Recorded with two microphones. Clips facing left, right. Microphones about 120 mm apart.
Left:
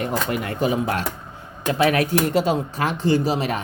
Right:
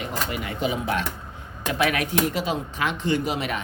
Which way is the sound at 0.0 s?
50° left (ahead or behind).